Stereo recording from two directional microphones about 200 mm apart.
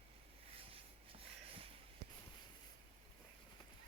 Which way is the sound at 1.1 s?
30° right (ahead or behind).